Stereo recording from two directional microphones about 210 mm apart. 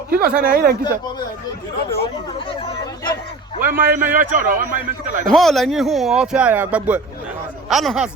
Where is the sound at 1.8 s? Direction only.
25° left (ahead or behind).